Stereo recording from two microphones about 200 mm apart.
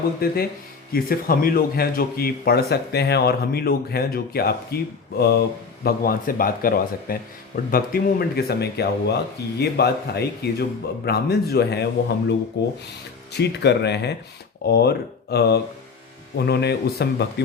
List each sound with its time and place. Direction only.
0.2 s speech: 50° left (ahead or behind)